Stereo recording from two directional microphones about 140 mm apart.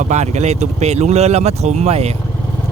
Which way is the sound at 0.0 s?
55° right (ahead or behind).